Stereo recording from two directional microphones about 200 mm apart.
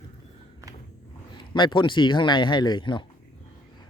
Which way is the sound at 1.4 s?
25° left (ahead or behind).